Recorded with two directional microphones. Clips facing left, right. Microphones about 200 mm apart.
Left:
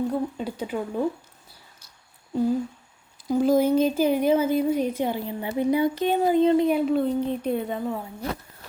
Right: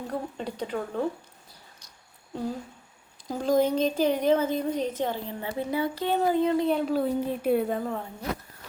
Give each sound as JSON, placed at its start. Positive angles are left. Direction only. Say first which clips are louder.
{"t": 0.1, "sound": "a woman's voice", "louder": "left 5 dB", "side_deg": 5}
{"t": 3.2, "sound": "a woman's voice", "louder": "left 4 dB", "side_deg": 5}
{"t": 6.7, "sound": "a woman's voice", "louder": "left 3 dB", "side_deg": 5}